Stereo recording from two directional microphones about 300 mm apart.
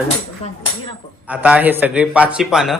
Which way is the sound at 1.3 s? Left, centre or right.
Centre.